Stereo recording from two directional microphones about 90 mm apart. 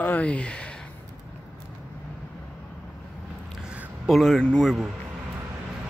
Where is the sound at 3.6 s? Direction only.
10° right (ahead or behind).